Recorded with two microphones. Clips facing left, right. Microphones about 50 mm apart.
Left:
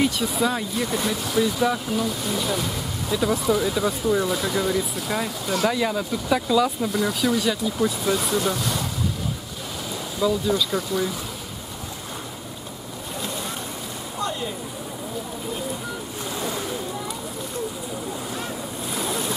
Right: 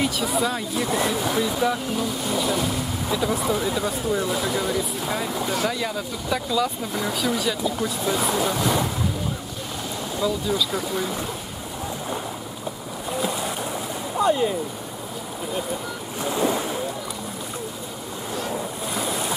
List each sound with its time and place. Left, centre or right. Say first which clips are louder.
0.0 s speech: left 1 dB; centre
1.6 s speech: left 1 dB; centre
6.9 s speech: left 2 dB; centre
10.2 s speech: left 3 dB; centre
13.2 s boat: right 4 dB; centre
14.2 s a sound: right 8 dB; centre
18.9 s boat: even; centre